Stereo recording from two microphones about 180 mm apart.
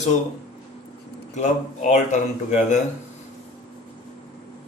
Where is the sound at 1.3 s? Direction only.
40° left (ahead or behind).